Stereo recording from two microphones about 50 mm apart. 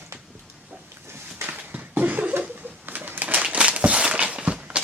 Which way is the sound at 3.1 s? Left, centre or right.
Right.